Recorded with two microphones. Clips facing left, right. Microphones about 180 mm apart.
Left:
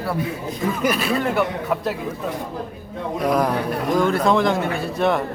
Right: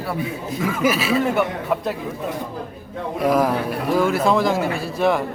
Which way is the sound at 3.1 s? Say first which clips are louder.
Right 2 dB; 5° right (ahead or behind).